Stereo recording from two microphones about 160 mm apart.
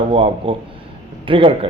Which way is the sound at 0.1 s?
35° right (ahead or behind).